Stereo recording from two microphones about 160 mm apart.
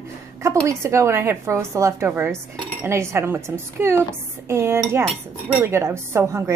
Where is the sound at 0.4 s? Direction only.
20° right (ahead or behind).